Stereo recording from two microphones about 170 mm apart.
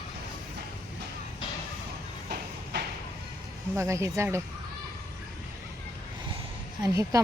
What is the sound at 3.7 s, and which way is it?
Speech, 15° right (ahead or behind).